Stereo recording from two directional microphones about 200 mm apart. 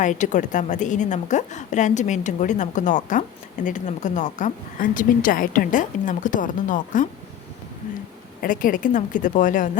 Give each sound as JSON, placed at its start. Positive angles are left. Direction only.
{"t": 0.0, "sound": "a woman's voice", "side_deg": 40}
{"t": 8.4, "sound": "a woman's voice", "side_deg": 45}